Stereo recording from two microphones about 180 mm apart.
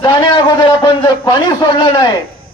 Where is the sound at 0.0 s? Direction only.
25° left (ahead or behind).